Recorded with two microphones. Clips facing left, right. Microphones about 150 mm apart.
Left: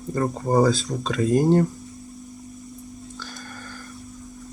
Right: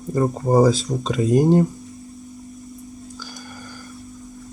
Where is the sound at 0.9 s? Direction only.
20° right (ahead or behind).